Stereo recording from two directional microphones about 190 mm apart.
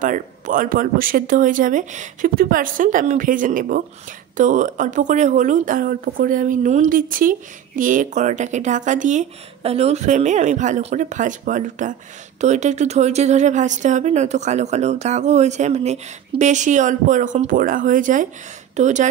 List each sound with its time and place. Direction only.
0.0 s speech: 45° right (ahead or behind)